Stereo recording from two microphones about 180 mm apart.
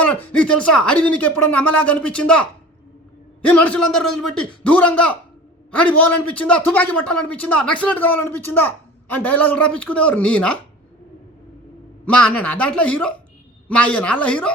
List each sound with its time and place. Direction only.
0.0 s a man's voice: 10° left (ahead or behind)
12.0 s a man's voice: 5° left (ahead or behind)